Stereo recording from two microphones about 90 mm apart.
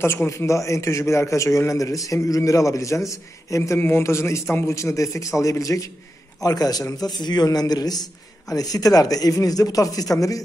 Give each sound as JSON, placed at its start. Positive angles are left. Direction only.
{"t": 0.0, "sound": "a man's voice", "side_deg": 25}